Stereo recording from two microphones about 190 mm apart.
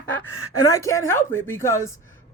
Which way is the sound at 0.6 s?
15° left (ahead or behind).